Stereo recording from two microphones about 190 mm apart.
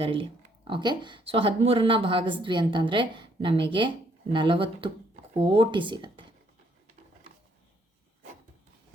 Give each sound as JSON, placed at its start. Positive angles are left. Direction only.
{"t": 0.0, "sound": "speech", "side_deg": -30}